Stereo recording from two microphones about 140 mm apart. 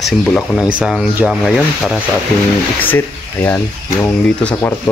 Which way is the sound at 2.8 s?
15° left (ahead or behind).